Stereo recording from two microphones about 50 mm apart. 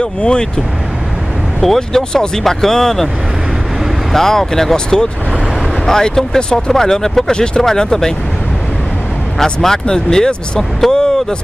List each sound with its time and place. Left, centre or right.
0.0 s speech: centre
1.6 s speech: centre
4.1 s speech: centre
9.4 s speech: centre